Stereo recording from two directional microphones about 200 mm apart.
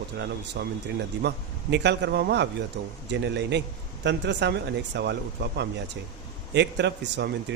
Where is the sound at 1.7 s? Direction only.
60° right (ahead or behind).